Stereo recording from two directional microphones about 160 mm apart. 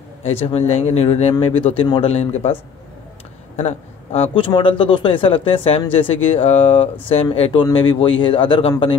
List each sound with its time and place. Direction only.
0.2 s a man's voice: 40° left (ahead or behind)
3.5 s a man's voice: 40° left (ahead or behind)